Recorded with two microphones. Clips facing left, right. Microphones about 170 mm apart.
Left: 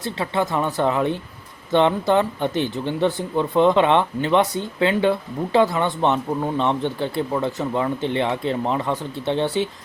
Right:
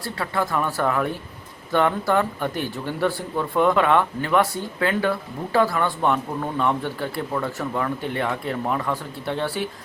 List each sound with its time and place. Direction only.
0.0 s speech: 20° left (ahead or behind)